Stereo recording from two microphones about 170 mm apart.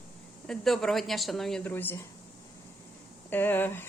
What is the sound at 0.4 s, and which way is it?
A woman's voice, 5° left (ahead or behind).